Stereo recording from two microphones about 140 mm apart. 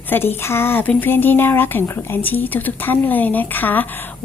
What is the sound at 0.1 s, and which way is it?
A woman's voice, 15° left (ahead or behind).